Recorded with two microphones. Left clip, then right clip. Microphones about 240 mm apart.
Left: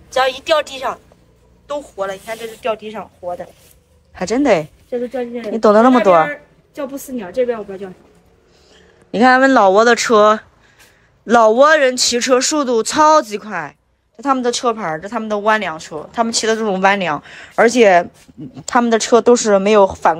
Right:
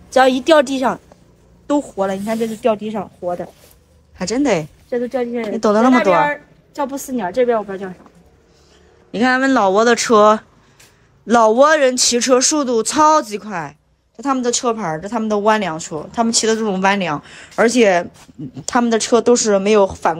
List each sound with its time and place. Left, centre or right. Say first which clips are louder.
0.1 s speech: right 3 dB; right
4.1 s speech: left 3 dB; centre
4.8 s speech: right 2 dB; right
5.5 s speech: left 4 dB; centre
9.1 s speech: left 5 dB; centre